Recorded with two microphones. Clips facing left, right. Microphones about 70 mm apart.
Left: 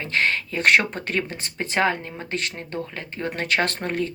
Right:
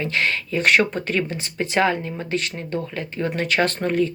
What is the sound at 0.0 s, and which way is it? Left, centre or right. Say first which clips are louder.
Speech: even; left.